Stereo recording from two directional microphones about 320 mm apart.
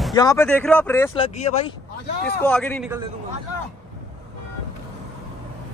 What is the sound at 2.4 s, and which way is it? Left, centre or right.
Speech, centre.